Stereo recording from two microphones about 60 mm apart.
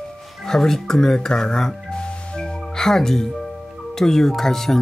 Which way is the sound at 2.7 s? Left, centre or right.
Centre.